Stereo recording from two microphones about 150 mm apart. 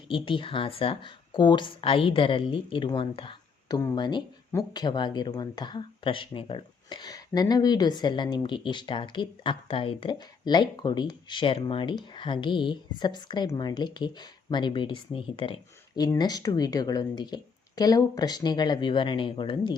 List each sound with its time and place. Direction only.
0.1 s speech: 35° left (ahead or behind)